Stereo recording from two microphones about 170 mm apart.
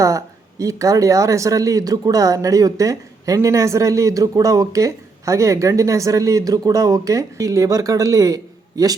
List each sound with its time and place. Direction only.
0.6 s speech: 20° right (ahead or behind)